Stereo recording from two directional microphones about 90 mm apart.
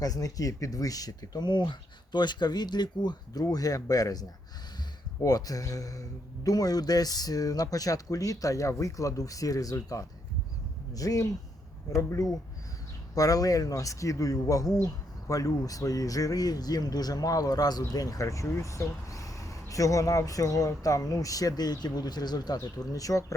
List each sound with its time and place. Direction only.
0.0 s speech: 45° left (ahead or behind)